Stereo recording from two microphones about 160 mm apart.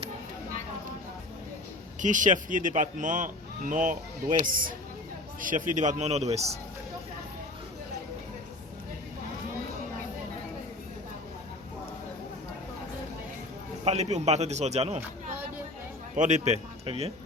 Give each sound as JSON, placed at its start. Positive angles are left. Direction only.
{"t": 2.0, "sound": "speech", "side_deg": -50}
{"t": 13.8, "sound": "speech", "side_deg": -45}
{"t": 16.1, "sound": "speech", "side_deg": -50}